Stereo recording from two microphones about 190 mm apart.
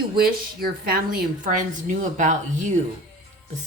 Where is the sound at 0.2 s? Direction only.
50° right (ahead or behind).